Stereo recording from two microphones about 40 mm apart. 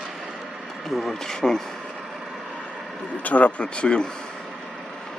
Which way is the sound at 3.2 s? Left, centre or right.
Left.